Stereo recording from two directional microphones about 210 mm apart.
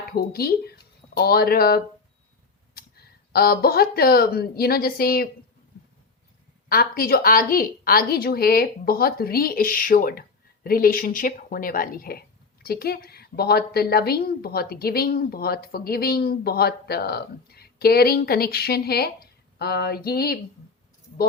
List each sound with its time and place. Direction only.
0.2 s speech: 45° left (ahead or behind)
6.7 s speech: 45° left (ahead or behind)